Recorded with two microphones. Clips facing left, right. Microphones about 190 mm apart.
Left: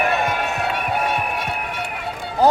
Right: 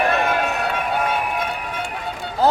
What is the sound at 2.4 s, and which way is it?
Speech, 15° left (ahead or behind).